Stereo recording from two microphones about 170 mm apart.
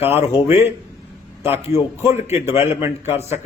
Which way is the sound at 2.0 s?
15° right (ahead or behind).